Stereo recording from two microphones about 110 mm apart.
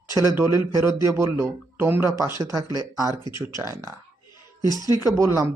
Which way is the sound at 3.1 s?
40° left (ahead or behind).